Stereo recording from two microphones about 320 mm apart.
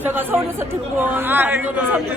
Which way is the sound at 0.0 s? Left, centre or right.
Centre.